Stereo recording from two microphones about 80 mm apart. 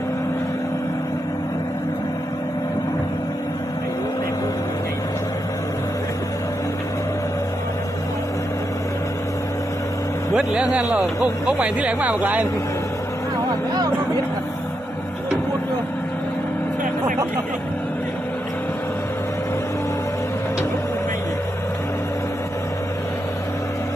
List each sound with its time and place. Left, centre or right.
10.3 s speech: centre